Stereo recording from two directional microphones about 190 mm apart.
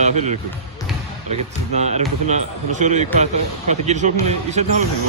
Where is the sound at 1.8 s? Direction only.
35° right (ahead or behind).